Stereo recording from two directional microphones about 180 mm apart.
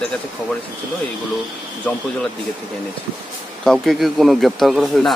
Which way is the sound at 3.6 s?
Centre (ahead or behind).